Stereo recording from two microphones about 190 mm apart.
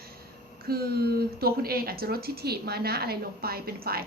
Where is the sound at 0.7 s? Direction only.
55° right (ahead or behind).